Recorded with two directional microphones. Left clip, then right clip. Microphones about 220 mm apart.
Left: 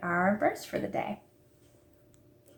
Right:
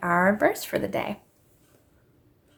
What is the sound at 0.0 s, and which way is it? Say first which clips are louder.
Speech: right 6 dB; 50° right (ahead or behind).